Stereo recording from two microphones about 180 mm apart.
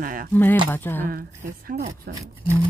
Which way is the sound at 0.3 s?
10° left (ahead or behind).